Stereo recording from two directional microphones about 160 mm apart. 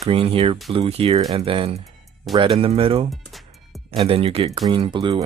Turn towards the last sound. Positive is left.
turn(degrees=-30)  # may be behind; listen again after turning